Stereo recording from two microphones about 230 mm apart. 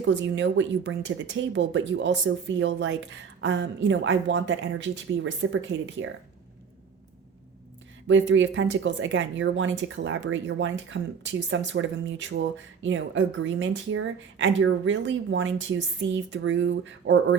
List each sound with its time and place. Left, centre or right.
0.0 s speech: right
8.0 s speech: right